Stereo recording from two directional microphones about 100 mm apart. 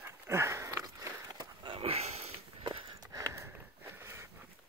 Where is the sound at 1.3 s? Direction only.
50° right (ahead or behind).